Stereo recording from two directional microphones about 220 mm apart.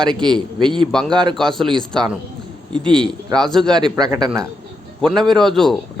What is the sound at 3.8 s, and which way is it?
Speech, 20° right (ahead or behind).